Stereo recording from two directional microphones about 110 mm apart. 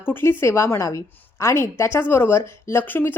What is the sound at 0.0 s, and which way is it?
Speech, 20° left (ahead or behind).